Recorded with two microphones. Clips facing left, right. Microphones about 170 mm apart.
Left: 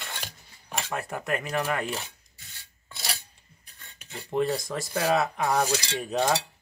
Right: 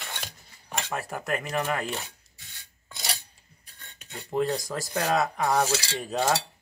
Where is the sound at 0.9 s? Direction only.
Centre (ahead or behind).